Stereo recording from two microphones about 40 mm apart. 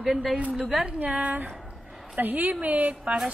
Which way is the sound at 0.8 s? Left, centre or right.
Right.